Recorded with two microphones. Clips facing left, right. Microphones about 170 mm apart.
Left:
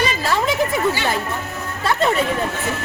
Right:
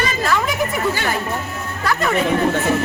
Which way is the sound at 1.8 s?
25° left (ahead or behind).